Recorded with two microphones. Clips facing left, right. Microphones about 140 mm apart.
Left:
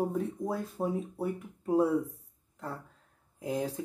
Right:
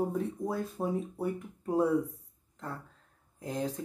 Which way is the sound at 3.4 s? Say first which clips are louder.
Left 2 dB; 10° left (ahead or behind).